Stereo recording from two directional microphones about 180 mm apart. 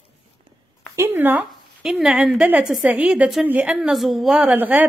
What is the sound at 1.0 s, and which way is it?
Speech, 10° right (ahead or behind).